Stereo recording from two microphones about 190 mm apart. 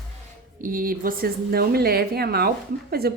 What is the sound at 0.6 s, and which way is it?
A woman's voice, 45° right (ahead or behind).